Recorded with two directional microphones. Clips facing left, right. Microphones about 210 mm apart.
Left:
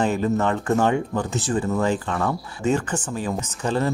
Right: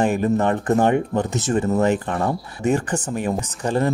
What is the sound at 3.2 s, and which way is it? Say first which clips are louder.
Speech: right 1 dB; 15° right (ahead or behind).